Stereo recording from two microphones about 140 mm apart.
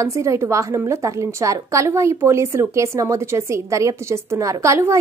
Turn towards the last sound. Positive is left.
turn(degrees=-20)  # may be behind; listen again after turning